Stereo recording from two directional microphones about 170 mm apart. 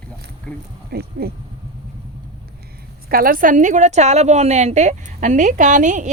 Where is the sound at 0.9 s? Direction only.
65° right (ahead or behind).